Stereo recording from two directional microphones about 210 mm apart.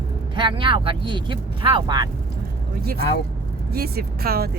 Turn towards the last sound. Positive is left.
turn(degrees=-45)  # may be behind; listen again after turning